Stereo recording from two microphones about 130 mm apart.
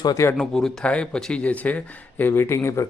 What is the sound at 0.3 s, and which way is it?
Speech, 5° left (ahead or behind).